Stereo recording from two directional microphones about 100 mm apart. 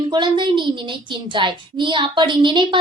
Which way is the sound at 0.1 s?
50° right (ahead or behind).